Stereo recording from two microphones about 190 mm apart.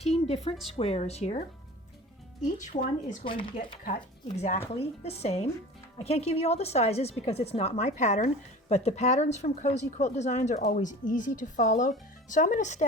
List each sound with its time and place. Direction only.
0.0 s a sound: 35° left (ahead or behind)
0.8 s speech: 30° left (ahead or behind)
2.6 s speech: 40° left (ahead or behind)
3.2 s speech: 25° left (ahead or behind)